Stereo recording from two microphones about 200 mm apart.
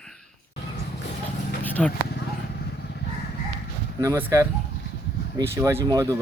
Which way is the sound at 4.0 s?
10° right (ahead or behind).